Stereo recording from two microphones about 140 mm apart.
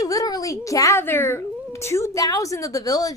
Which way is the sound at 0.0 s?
25° left (ahead or behind).